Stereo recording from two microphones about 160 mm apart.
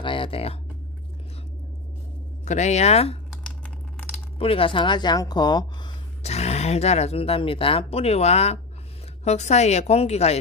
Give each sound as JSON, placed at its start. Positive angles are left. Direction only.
{"t": 0.0, "sound": "a sound", "side_deg": 30}
{"t": 2.4, "sound": "speech", "side_deg": 45}
{"t": 4.4, "sound": "speech", "side_deg": 35}
{"t": 6.2, "sound": "speech", "side_deg": 40}